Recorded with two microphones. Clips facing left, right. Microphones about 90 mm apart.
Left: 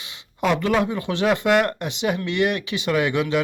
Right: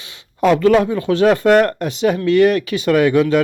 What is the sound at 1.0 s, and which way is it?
Speech, 40° right (ahead or behind).